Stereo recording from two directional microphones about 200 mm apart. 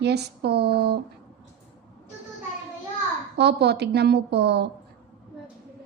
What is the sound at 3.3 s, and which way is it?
A woman's voice, 55° right (ahead or behind).